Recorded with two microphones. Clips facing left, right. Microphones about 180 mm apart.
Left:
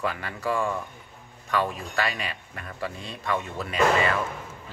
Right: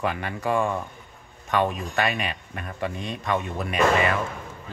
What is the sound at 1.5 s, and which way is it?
Speech, 20° right (ahead or behind).